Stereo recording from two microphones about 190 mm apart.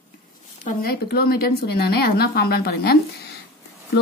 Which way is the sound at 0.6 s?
50° left (ahead or behind).